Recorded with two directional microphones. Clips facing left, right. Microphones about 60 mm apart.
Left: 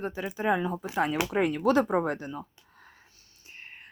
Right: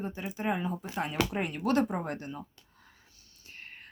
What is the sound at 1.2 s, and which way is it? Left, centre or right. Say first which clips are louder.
Speech: even; centre.